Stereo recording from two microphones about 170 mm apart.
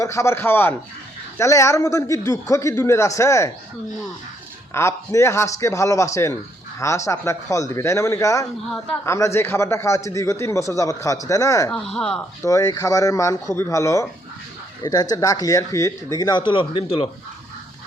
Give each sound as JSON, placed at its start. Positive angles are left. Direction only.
{"t": 0.0, "sound": "a man's voice", "side_deg": 15}
{"t": 4.7, "sound": "a man's voice", "side_deg": 15}
{"t": 11.9, "sound": "speech", "side_deg": 5}
{"t": 12.4, "sound": "a man's voice", "side_deg": 20}
{"t": 15.1, "sound": "speech", "side_deg": 20}